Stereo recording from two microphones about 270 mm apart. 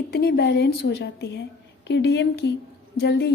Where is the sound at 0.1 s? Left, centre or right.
Left.